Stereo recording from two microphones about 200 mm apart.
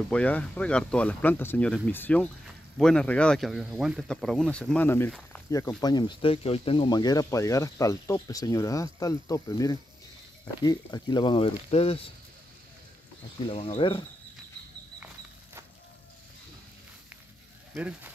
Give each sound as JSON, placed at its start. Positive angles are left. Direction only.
{"t": 0.1, "sound": "speech", "side_deg": 5}
{"t": 13.5, "sound": "speech", "side_deg": 30}
{"t": 17.7, "sound": "speech", "side_deg": -10}